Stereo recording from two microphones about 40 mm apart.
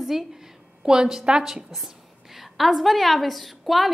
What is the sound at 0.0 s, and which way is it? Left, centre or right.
A woman's voice, centre.